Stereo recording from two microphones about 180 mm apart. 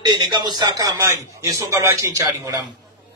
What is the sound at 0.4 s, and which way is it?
A man's voice, 20° right (ahead or behind).